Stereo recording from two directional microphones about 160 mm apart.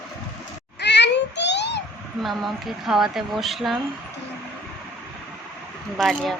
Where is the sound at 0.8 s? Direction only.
90° left.